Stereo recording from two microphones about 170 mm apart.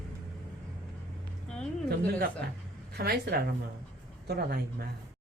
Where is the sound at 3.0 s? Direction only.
70° right (ahead or behind).